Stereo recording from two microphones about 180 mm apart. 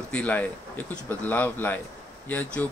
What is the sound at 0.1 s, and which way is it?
Speech, 10° left (ahead or behind).